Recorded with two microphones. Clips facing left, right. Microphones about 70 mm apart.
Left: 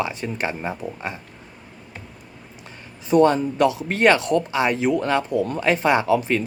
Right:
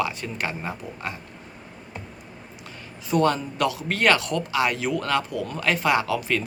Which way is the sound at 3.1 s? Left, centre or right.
Left.